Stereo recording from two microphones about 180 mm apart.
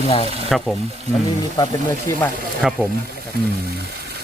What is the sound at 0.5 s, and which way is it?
Speech, centre (ahead or behind).